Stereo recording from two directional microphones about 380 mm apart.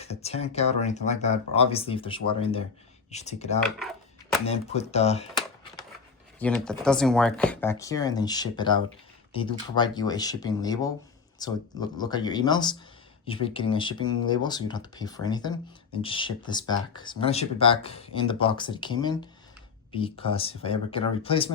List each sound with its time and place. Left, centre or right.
0.0 s speech: centre
3.8 s a sound: centre
4.4 s speech: centre
6.4 s speech: centre